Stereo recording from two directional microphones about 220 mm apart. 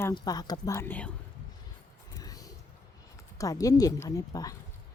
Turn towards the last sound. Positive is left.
turn(degrees=15)  # may be behind; listen again after turning